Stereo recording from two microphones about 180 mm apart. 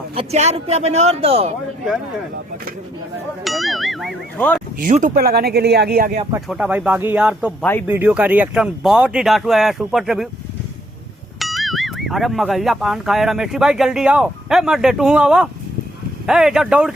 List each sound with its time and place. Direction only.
0.1 s speech: 35° right (ahead or behind)
3.4 s music: centre (ahead or behind)
4.4 s a sound: 10° left (ahead or behind)
4.8 s speech: 45° right (ahead or behind); by 6.1 s 65° right (ahead or behind)
6.5 s speech: 5° right (ahead or behind)
7.6 s speech: 10° left (ahead or behind)
7.9 s speech: 10° right (ahead or behind)
11.3 s speech: centre (ahead or behind)